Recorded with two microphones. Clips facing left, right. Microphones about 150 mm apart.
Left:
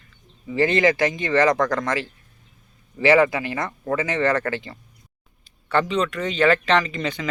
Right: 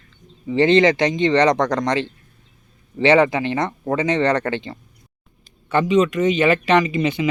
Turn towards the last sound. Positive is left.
turn(degrees=-15)  # may be behind; listen again after turning